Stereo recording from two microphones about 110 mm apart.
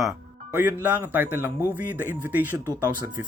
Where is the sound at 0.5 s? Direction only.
15° right (ahead or behind).